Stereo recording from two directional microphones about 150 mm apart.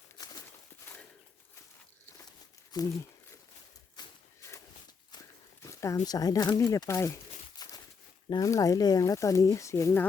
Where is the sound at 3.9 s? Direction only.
20° left (ahead or behind).